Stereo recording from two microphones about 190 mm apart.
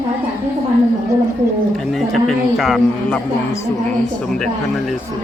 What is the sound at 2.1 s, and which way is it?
A man's voice, centre (ahead or behind).